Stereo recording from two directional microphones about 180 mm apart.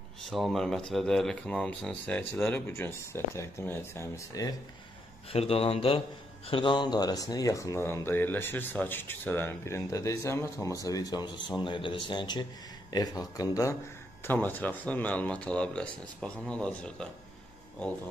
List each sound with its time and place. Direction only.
0.2 s speech: centre (ahead or behind); by 4.6 s 20° left (ahead or behind)
5.3 s a man's voice: 35° left (ahead or behind); by 17.1 s 5° left (ahead or behind)